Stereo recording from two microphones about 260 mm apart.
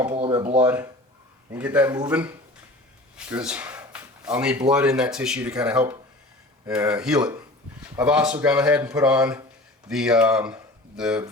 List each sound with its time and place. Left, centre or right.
0.2 s speech: centre
3.2 s a sound: centre
4.7 s speech: centre